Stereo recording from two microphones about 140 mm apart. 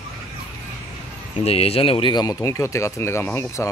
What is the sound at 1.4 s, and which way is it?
Speech, 45° left (ahead or behind).